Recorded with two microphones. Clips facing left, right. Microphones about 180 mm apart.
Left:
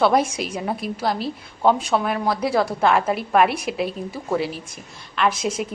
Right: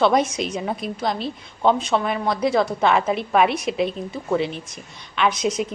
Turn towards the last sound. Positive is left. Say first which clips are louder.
# right 1 dB
turn(degrees=5)  # may be behind; listen again after turning